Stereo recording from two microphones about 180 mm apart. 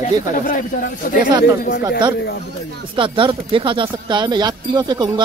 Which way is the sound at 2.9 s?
30° right (ahead or behind).